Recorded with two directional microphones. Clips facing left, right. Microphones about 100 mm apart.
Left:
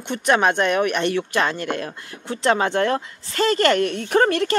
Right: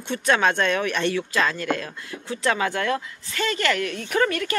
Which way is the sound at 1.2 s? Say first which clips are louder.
Left 2 dB; 30° left (ahead or behind).